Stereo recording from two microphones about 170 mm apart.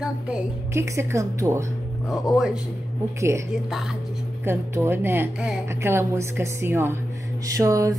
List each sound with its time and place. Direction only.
0.7 s a woman's voice: 15° right (ahead or behind)
2.0 s speech: centre (ahead or behind)
3.2 s a woman's voice: 15° right (ahead or behind)
4.5 s a woman's voice: 15° right (ahead or behind)
7.4 s a sound: 20° right (ahead or behind)